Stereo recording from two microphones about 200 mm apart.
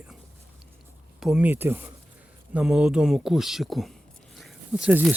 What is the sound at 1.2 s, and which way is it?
Speech, 5° right (ahead or behind).